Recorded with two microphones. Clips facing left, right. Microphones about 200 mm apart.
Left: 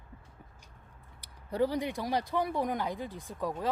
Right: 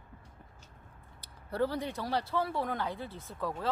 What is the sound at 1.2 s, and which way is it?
Speech, 15° left (ahead or behind).